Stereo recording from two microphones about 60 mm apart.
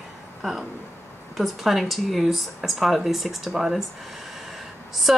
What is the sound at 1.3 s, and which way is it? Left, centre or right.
Speech, centre.